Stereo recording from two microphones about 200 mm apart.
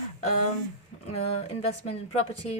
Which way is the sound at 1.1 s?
30° left (ahead or behind).